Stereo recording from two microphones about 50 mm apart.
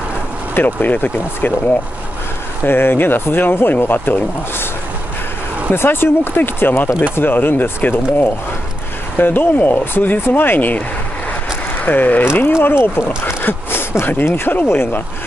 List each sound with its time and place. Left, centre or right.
0.6 s speech: left
2.6 s speech: left
5.7 s speech: left
9.2 s speech: left
11.8 s speech: left
12.3 s speech: left